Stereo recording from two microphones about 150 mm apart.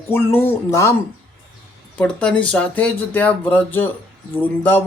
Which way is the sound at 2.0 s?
5° left (ahead or behind).